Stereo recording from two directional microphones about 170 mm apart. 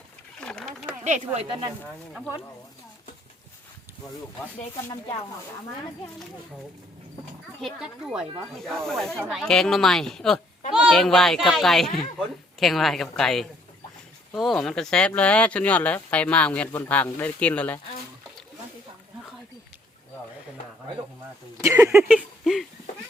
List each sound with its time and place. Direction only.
0.3 s a sound: 5° left (ahead or behind)
1.0 s speech: 40° right (ahead or behind)
7.6 s speech: 5° right (ahead or behind)
21.6 s speech: 15° right (ahead or behind)
22.0 s speech: centre (ahead or behind)